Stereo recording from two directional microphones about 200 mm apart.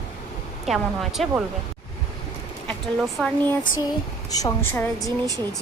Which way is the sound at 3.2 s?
5° left (ahead or behind).